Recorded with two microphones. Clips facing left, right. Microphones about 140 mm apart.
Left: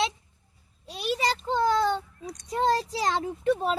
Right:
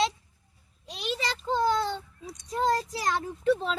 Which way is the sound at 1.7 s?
50° left (ahead or behind).